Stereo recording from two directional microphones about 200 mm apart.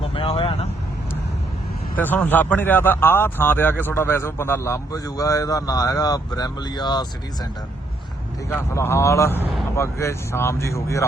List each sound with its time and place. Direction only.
0.0 s vehicle: 30° left (ahead or behind)
2.0 s speech: 10° left (ahead or behind)
8.4 s speech: 10° left (ahead or behind)